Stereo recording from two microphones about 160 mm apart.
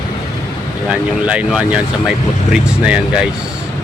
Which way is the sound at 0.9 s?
10° right (ahead or behind).